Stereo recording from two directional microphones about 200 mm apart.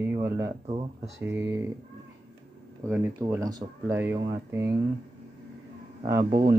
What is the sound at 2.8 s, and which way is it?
Speech, 15° right (ahead or behind).